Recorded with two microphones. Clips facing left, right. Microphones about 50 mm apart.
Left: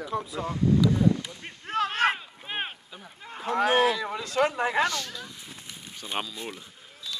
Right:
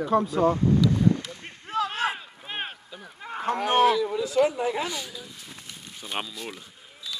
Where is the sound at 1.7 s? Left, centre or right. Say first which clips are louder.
Right 1 dB; left.